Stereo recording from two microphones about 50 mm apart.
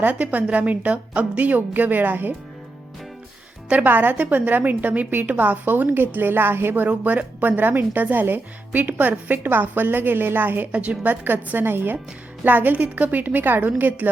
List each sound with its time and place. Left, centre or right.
0.0 s speech: right
3.8 s speech: right
4.1 s a woman's voice: right
6.8 s speech: right
10.7 s a woman's voice: right
11.1 s a woman's voice: right